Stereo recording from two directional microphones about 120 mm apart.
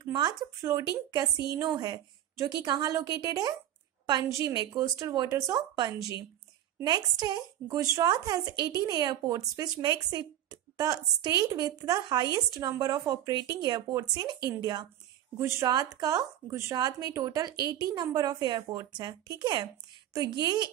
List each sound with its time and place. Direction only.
0.0 s a woman's voice: 35° right (ahead or behind)
15.3 s speech: 25° right (ahead or behind)